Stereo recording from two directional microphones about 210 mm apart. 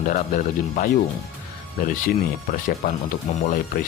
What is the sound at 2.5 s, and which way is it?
Speech, 40° left (ahead or behind).